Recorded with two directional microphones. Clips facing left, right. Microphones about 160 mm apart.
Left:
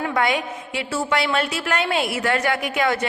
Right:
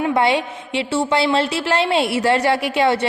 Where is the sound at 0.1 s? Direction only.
30° right (ahead or behind).